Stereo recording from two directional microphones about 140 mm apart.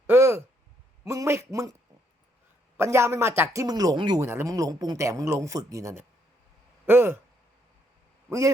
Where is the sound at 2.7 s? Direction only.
20° right (ahead or behind).